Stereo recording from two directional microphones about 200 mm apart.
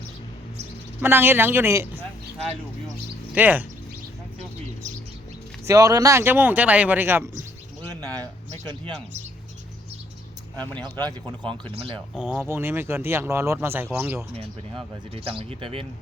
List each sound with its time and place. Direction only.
1.0 s speech: 10° right (ahead or behind)
3.3 s speech: 10° right (ahead or behind)
5.6 s speech: 15° right (ahead or behind)
8.0 s a sound: 20° right (ahead or behind)
11.5 s speech: 30° right (ahead or behind)
12.1 s speech: 5° right (ahead or behind)
14.3 s speech: 30° right (ahead or behind)